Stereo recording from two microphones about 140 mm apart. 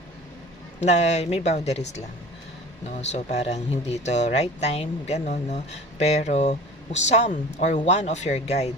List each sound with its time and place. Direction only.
0.8 s speech: 55° left (ahead or behind)